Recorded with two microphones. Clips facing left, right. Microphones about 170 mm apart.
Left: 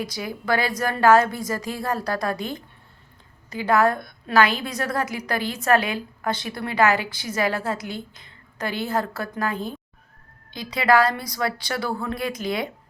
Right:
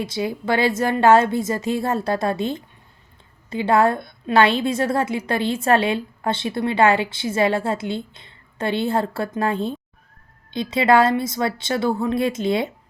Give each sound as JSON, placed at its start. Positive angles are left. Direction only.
{"t": 0.0, "sound": "a woman's voice", "side_deg": -25}